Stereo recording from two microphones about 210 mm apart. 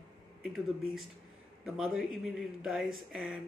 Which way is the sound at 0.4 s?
Centre (ahead or behind).